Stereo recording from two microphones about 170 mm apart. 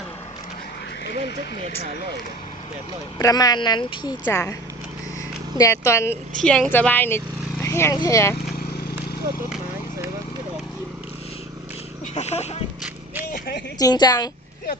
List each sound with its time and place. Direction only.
3.2 s speech: 20° left (ahead or behind)
4.3 s speech: 15° left (ahead or behind)
5.5 s speech: 20° left (ahead or behind)
6.4 s speech: 5° left (ahead or behind)
7.6 s a sound: 15° left (ahead or behind)
7.9 s speech: 20° left (ahead or behind)
12.1 s speech: 40° left (ahead or behind)
13.7 s speech: 25° left (ahead or behind)